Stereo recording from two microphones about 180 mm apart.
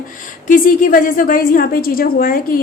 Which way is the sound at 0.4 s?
50° left (ahead or behind).